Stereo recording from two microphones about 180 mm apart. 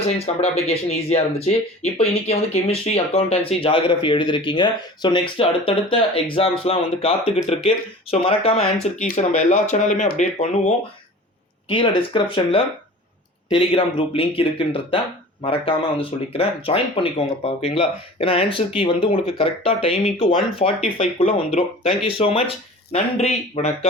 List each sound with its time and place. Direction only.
0.4 s speech: 35° left (ahead or behind)
11.7 s speech: 30° left (ahead or behind)